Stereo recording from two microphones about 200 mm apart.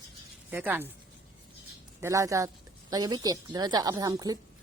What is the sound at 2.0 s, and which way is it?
A woman's voice, 15° right (ahead or behind).